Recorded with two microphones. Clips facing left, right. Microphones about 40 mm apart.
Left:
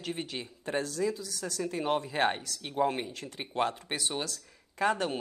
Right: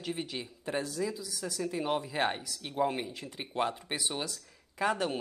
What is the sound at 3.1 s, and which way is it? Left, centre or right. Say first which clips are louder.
Speech: left 1 dB; centre.